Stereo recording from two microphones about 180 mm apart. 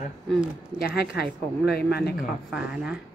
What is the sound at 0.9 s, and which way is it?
Speech, 65° left (ahead or behind).